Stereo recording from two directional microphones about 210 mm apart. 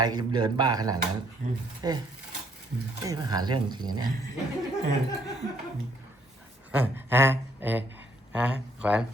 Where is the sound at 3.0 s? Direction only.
15° right (ahead or behind).